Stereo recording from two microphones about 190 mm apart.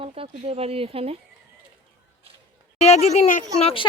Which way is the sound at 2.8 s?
35° left (ahead or behind).